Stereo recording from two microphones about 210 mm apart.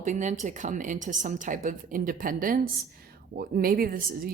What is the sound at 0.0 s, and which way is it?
A woman's voice, 35° right (ahead or behind).